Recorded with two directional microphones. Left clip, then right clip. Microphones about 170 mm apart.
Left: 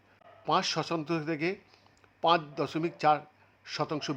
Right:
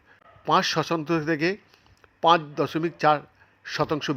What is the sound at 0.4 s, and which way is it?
A man's voice, 20° right (ahead or behind).